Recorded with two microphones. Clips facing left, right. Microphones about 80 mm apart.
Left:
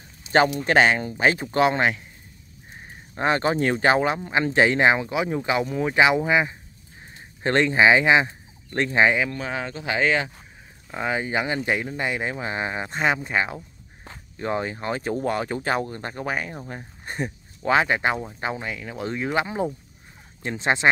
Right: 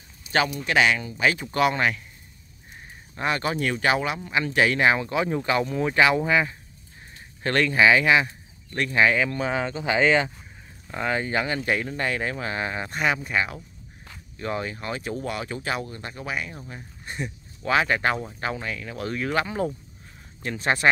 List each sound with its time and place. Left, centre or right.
0.3 s speech: left
3.2 s speech: left
9.2 s speech: centre
10.9 s speech: centre; by 17.7 s left
17.7 s speech: left